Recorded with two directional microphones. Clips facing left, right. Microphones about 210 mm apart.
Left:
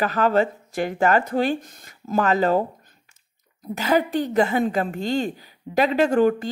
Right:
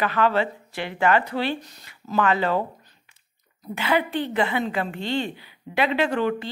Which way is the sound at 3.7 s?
40° left (ahead or behind).